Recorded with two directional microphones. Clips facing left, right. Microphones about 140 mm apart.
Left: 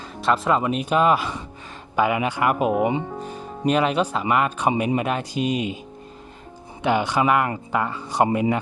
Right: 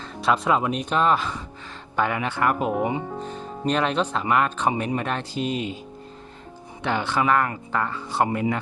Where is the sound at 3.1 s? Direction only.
10° left (ahead or behind).